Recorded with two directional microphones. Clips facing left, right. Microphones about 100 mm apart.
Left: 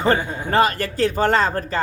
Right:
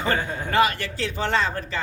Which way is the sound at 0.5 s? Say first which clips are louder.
Left 3 dB; 40° left (ahead or behind).